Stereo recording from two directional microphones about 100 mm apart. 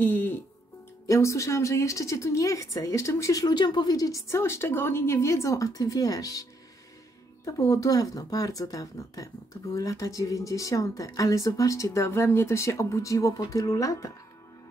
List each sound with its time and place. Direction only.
0.0 s speech: 20° left (ahead or behind)
1.0 s speech: 30° left (ahead or behind)
7.4 s speech: 35° left (ahead or behind)